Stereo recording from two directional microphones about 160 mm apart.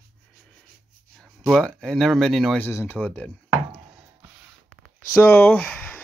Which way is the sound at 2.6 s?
15° left (ahead or behind).